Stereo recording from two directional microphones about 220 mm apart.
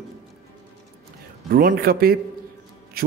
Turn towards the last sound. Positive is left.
turn(degrees=-40)  # may be behind; listen again after turning